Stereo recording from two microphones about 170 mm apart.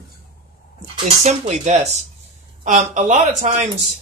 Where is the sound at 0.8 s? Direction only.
40° right (ahead or behind).